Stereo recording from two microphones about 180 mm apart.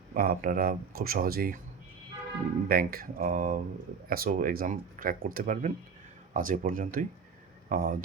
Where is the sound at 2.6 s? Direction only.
55° right (ahead or behind).